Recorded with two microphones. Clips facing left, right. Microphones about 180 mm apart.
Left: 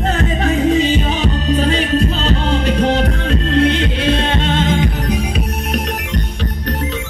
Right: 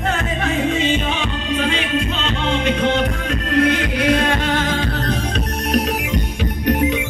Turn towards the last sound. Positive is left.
turn(degrees=20)  # may be behind; listen again after turning